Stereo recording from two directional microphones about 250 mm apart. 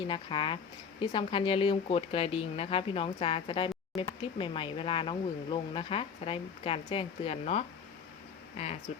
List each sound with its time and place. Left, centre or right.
0.0 s speech: centre
8.9 s speech: left